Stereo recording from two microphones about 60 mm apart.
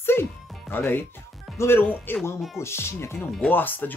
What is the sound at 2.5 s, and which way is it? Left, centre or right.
Speech, left.